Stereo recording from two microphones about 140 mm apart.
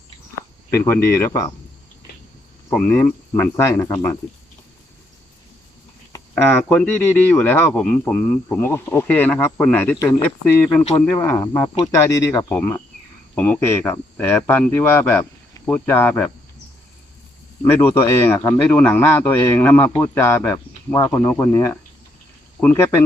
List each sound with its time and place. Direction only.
0.9 s speech: 15° left (ahead or behind)
2.7 s speech: 10° left (ahead or behind)
6.3 s speech: 10° left (ahead or behind); by 12.5 s 25° left (ahead or behind)
12.5 s speech: 10° left (ahead or behind)
17.7 s speech: 15° left (ahead or behind)